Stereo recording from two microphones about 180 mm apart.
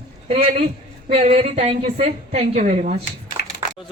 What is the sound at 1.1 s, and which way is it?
Speech, 30° right (ahead or behind).